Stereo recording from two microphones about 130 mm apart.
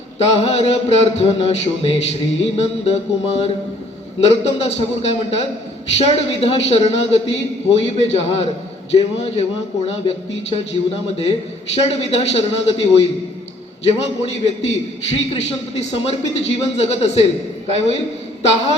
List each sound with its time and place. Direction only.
0.2 s a man's voice: 55° left (ahead or behind)